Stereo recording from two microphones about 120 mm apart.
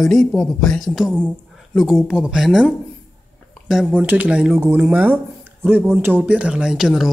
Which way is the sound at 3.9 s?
15° right (ahead or behind).